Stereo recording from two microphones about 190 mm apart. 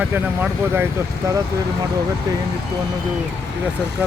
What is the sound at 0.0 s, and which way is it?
Speech, 5° right (ahead or behind).